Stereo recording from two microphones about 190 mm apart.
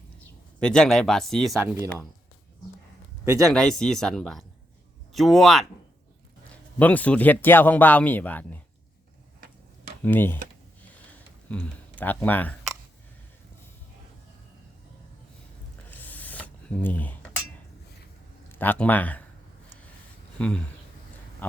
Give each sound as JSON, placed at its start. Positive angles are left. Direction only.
{"t": 0.6, "sound": "speech", "side_deg": 5}
{"t": 1.5, "sound": "speech", "side_deg": -15}
{"t": 3.5, "sound": "speech", "side_deg": 5}
{"t": 6.7, "sound": "speech", "side_deg": 10}
{"t": 10.0, "sound": "speech", "side_deg": 10}
{"t": 11.4, "sound": "speech", "side_deg": 5}
{"t": 15.9, "sound": "rub", "side_deg": 10}
{"t": 18.5, "sound": "speech", "side_deg": 10}
{"t": 20.4, "sound": "speech", "side_deg": 5}